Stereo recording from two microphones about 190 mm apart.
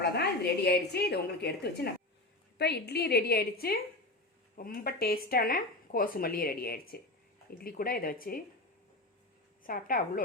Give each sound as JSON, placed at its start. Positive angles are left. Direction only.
{"t": 0.0, "sound": "a woman's voice", "side_deg": 60}
{"t": 9.6, "sound": "speech", "side_deg": 45}